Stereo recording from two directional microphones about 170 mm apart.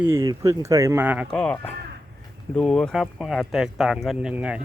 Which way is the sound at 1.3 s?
5° left (ahead or behind).